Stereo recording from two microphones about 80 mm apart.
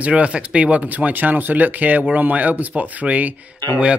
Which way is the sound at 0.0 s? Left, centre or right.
Centre.